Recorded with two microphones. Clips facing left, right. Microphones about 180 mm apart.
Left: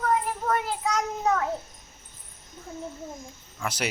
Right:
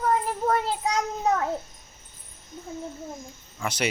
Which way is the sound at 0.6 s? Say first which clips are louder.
Right 1 dB; 30° right (ahead or behind).